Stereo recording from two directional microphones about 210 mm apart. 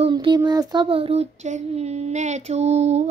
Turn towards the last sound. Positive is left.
turn(degrees=-30)  # may be behind; listen again after turning